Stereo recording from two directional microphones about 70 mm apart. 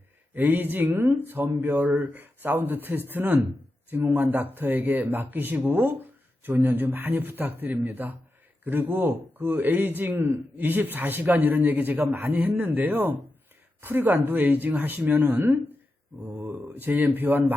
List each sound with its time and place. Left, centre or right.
0.3 s a man's voice: right